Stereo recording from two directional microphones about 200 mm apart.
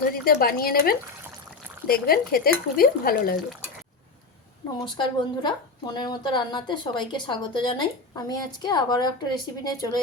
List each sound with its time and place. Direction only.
0.1 s speech: 50° left (ahead or behind)
4.8 s a woman's voice: 20° left (ahead or behind)